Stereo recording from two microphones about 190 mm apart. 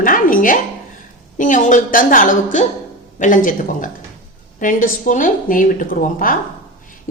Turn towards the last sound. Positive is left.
turn(degrees=45)  # may be behind; listen again after turning